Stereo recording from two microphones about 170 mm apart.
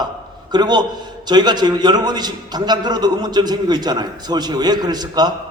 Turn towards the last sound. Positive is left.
turn(degrees=-25)  # may be behind; listen again after turning